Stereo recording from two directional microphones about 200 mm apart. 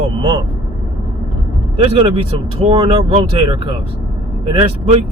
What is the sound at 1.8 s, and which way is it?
Speech, 30° right (ahead or behind).